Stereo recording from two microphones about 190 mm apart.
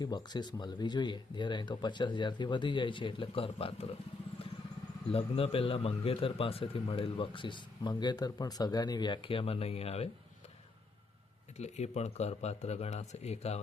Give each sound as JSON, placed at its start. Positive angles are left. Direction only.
{"t": 0.0, "sound": "a man's voice", "side_deg": 20}
{"t": 5.1, "sound": "a man's voice", "side_deg": 30}
{"t": 11.5, "sound": "speech", "side_deg": 35}